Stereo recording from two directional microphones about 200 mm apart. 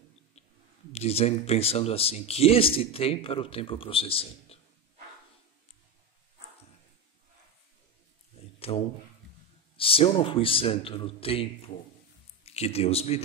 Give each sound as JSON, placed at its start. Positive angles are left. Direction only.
{"t": 0.9, "sound": "speech", "side_deg": 30}
{"t": 8.4, "sound": "a sound", "side_deg": 30}
{"t": 9.8, "sound": "speech", "side_deg": 25}